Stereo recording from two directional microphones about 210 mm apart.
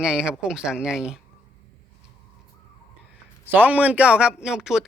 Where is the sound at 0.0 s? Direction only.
5° right (ahead or behind).